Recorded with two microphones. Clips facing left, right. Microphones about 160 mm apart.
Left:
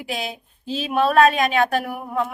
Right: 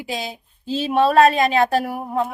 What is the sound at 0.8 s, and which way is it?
A woman's voice, 30° right (ahead or behind).